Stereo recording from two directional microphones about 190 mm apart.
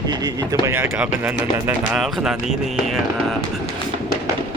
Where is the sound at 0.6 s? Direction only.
10° right (ahead or behind).